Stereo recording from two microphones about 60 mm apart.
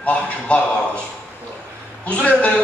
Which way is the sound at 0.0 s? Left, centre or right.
Left.